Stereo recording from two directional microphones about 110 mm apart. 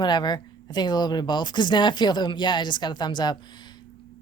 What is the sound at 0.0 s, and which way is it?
Speech, 40° left (ahead or behind).